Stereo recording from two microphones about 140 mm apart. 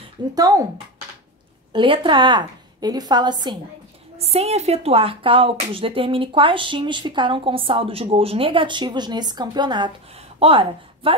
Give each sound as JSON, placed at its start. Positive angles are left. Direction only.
{"t": 0.3, "sound": "speech", "side_deg": -25}
{"t": 1.7, "sound": "speech", "side_deg": -35}
{"t": 4.2, "sound": "a woman's voice", "side_deg": -50}